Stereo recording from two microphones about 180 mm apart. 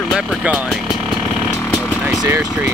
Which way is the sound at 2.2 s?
20° right (ahead or behind).